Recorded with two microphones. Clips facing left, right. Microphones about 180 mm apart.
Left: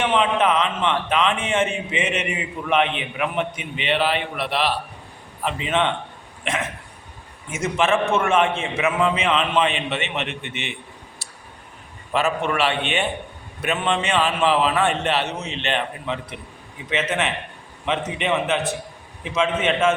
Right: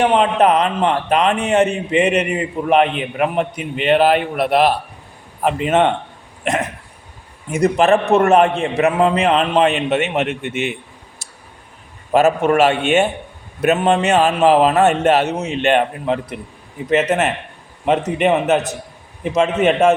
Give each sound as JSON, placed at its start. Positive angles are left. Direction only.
{"t": 0.0, "sound": "a man's voice", "side_deg": -40}
{"t": 6.4, "sound": "cough", "side_deg": -45}
{"t": 7.5, "sound": "a man's voice", "side_deg": -40}
{"t": 12.1, "sound": "a man's voice", "side_deg": -45}